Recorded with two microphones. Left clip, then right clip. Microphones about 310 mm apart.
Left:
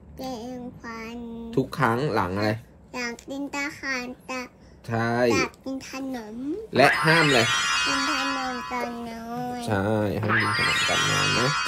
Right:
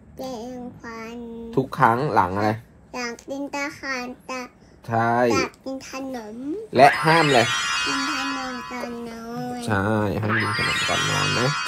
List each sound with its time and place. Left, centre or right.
0.2 s child singing: centre
1.5 s speech: centre
2.9 s a child's voice: centre
4.8 s speech: centre
5.3 s speech: centre
9.6 s a sound: right
10.2 s music: centre